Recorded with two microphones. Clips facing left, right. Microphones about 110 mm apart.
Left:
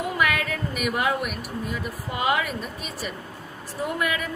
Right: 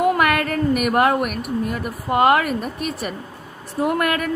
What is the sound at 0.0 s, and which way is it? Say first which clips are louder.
A woman's voice: right 7 dB; 55° right (ahead or behind).